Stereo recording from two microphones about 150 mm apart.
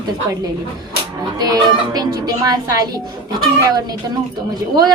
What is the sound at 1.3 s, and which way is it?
Speech, 25° right (ahead or behind).